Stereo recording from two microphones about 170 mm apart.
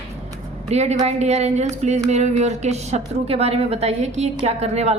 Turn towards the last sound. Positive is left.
turn(degrees=-40)  # may be behind; listen again after turning